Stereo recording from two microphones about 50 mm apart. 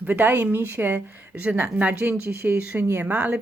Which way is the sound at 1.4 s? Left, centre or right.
Right.